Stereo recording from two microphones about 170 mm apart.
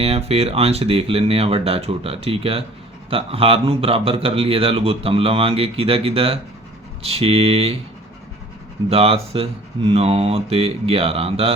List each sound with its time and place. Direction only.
0.0 s speech: 35° right (ahead or behind)
8.9 s speech: 35° right (ahead or behind)